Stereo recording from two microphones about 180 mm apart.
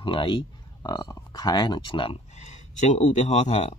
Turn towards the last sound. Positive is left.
turn(degrees=40)  # may be behind; listen again after turning